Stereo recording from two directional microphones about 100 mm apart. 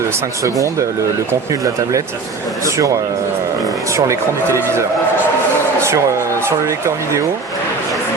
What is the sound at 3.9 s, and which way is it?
Speech, 30° right (ahead or behind).